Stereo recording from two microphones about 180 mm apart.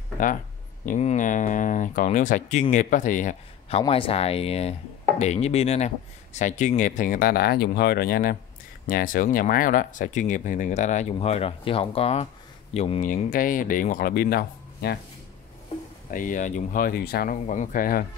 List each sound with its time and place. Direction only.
0.8 s speech: 45° left (ahead or behind)
13.1 s speech: 50° left (ahead or behind)
16.1 s speech: 45° left (ahead or behind)